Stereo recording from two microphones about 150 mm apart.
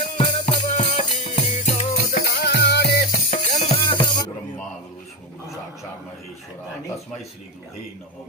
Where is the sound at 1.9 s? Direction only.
75° left (ahead or behind).